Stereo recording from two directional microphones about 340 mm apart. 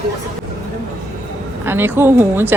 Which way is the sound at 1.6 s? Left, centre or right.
Centre.